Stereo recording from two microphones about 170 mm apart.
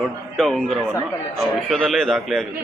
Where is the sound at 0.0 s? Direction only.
Centre (ahead or behind).